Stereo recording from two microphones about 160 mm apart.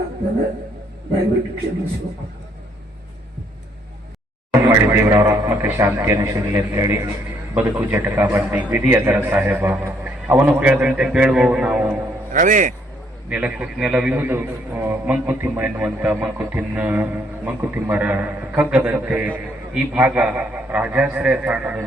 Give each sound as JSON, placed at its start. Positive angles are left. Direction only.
{"t": 4.6, "sound": "a man's voice", "side_deg": -15}
{"t": 12.3, "sound": "a man's voice", "side_deg": -55}
{"t": 13.3, "sound": "a man's voice", "side_deg": -10}